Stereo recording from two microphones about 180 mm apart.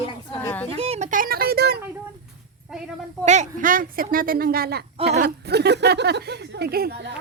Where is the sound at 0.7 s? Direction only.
35° right (ahead or behind); by 1.8 s 60° right (ahead or behind).